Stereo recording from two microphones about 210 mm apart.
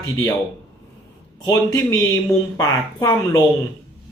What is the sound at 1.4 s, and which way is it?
Speech, 15° left (ahead or behind).